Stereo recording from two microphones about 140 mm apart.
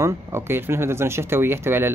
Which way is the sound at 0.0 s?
20° right (ahead or behind).